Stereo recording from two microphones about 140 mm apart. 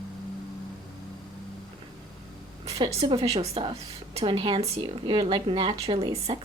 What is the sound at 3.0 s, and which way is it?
A woman's voice, 35° right (ahead or behind).